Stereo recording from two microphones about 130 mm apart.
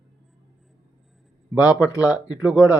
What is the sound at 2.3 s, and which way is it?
Speech, 5° right (ahead or behind).